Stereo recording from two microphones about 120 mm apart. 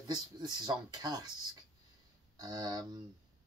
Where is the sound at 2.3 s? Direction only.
35° right (ahead or behind).